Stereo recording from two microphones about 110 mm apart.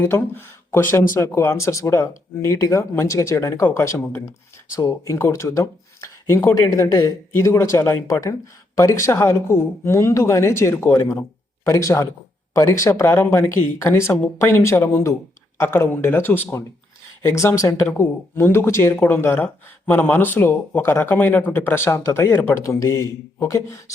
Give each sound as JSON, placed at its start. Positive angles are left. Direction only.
{"t": 0.0, "sound": "speech", "side_deg": 20}